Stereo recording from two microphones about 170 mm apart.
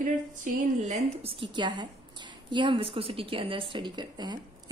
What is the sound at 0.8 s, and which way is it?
A woman's voice, 40° right (ahead or behind).